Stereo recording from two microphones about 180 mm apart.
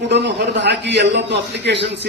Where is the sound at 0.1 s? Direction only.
75° right (ahead or behind).